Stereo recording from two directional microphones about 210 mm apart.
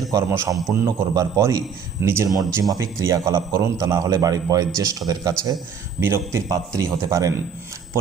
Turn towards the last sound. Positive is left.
turn(degrees=-15)  # may be behind; listen again after turning